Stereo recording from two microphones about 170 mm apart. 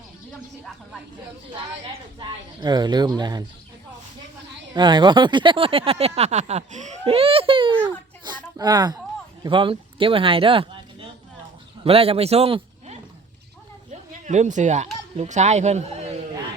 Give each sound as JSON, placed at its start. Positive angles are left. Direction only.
{"t": 1.9, "sound": "a woman's voice", "side_deg": -25}
{"t": 4.7, "sound": "speech", "side_deg": -25}
{"t": 7.9, "sound": "a sound", "side_deg": -25}
{"t": 8.5, "sound": "a woman's voice", "side_deg": -20}
{"t": 13.9, "sound": "a sound", "side_deg": -45}
{"t": 15.1, "sound": "speech", "side_deg": -40}